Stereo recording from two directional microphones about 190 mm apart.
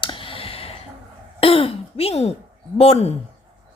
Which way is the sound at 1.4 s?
30° left (ahead or behind).